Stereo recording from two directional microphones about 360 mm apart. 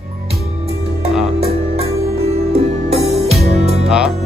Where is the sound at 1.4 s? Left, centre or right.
Centre.